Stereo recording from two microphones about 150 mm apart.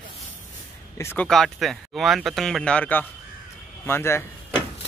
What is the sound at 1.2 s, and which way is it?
Speech, 5° left (ahead or behind).